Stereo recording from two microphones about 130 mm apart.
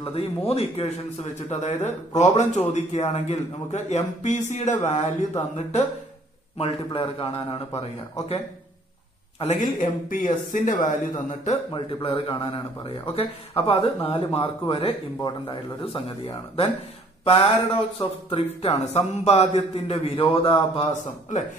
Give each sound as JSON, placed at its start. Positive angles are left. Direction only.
{"t": 0.0, "sound": "a man's voice", "side_deg": 50}
{"t": 6.6, "sound": "a man's voice", "side_deg": 45}
{"t": 9.6, "sound": "speech", "side_deg": 90}
{"t": 11.7, "sound": "a man's voice", "side_deg": 45}
{"t": 15.2, "sound": "a man's voice", "side_deg": 35}
{"t": 18.0, "sound": "a man's voice", "side_deg": 45}
{"t": 20.9, "sound": "a man's voice", "side_deg": 70}